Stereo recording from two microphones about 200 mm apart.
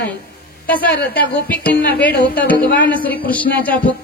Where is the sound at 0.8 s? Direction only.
50° left (ahead or behind).